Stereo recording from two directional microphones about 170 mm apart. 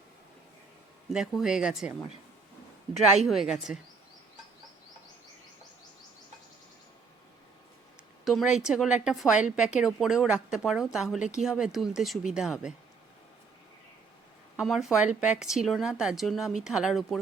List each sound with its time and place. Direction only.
1.1 s a woman's voice: 5° right (ahead or behind)
3.2 s a woman's voice: centre (ahead or behind)
8.2 s a woman's voice: centre (ahead or behind)
14.6 s a woman's voice: centre (ahead or behind)